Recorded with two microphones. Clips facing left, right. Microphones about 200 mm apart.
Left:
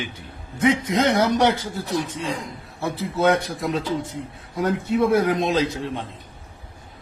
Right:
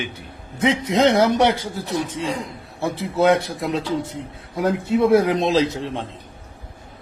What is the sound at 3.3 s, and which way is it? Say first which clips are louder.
Speech: right 2 dB; 25° right (ahead or behind).